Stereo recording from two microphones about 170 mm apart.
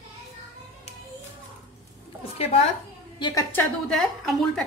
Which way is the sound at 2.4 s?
35° left (ahead or behind).